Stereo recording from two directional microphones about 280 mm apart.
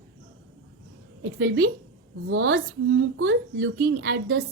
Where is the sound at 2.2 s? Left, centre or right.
Right.